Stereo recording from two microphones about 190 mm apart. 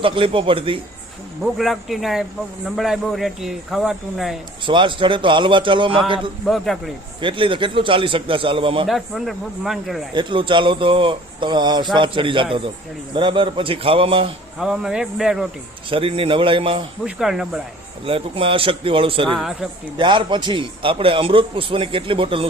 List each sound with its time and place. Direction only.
0.0 s a man's voice: 25° right (ahead or behind)
1.5 s speech: centre (ahead or behind)
4.6 s a man's voice: 25° right (ahead or behind)
6.4 s speech: centre (ahead or behind)
7.2 s a man's voice: 25° right (ahead or behind)
8.9 s speech: centre (ahead or behind)
10.2 s a man's voice: 25° right (ahead or behind)
14.6 s speech: 5° right (ahead or behind)
15.9 s a man's voice: 30° right (ahead or behind)
17.2 s speech: centre (ahead or behind)
18.0 s a man's voice: 30° right (ahead or behind)
19.3 s speech: centre (ahead or behind)
20.0 s a man's voice: 25° right (ahead or behind)